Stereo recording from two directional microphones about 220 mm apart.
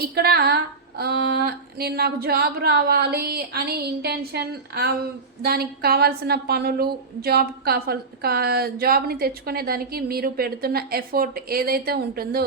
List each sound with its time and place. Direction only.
0.0 s a woman's voice: 45° right (ahead or behind)